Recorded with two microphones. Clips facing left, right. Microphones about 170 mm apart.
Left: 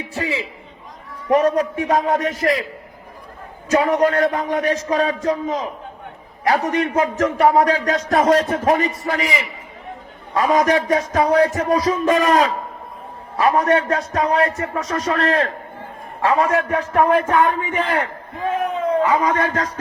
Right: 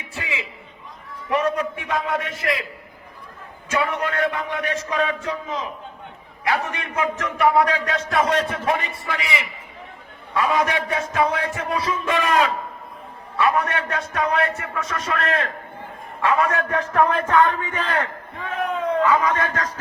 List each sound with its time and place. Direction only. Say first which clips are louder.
0.0 s a man's voice: left 7 dB; 35° left (ahead or behind)
3.7 s a man's voice: left 8 dB; 35° left (ahead or behind)
17.2 s speech: left 2 dB; 15° left (ahead or behind)
19.0 s a man's voice: left 2 dB; 20° left (ahead or behind)